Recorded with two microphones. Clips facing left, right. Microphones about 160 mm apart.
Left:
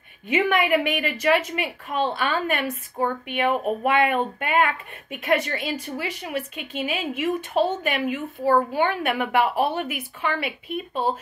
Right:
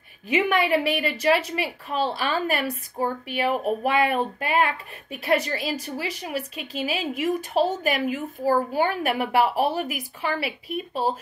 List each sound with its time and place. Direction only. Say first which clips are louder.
0.6 s a woman's voice: even; 35° right (ahead or behind)